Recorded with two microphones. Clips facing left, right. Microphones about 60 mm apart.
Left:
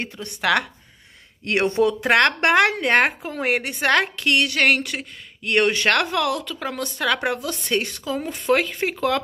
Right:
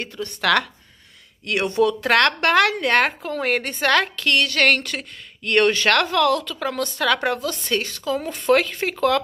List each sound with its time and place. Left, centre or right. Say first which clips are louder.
0.0 s speech: right 1 dB; left
1.4 s speech: even; left; by 9.2 s centre